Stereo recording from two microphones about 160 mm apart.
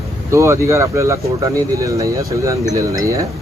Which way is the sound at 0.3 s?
20° right (ahead or behind).